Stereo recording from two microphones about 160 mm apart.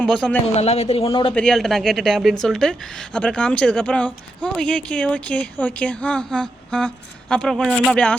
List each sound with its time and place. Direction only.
0.0 s a woman's voice: 5° left (ahead or behind)
0.5 s speech: 40° left (ahead or behind)
1.3 s a woman's voice: 5° left (ahead or behind)